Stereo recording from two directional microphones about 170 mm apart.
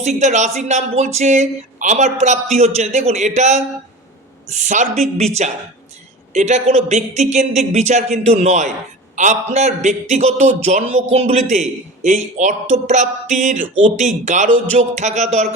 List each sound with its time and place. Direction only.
0.0 s a man's voice: 45° right (ahead or behind)